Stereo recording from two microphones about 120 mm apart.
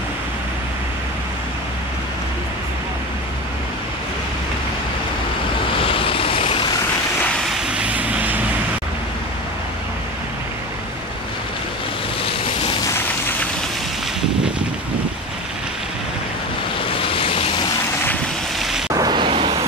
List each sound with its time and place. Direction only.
5.9 s vehicle: 50° left (ahead or behind)
7.4 s vehicle: 5° right (ahead or behind)
16.9 s waves: 50° left (ahead or behind)
18.9 s vehicle: 35° right (ahead or behind)